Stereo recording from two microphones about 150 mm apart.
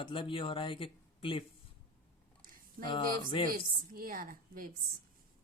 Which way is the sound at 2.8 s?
30° left (ahead or behind).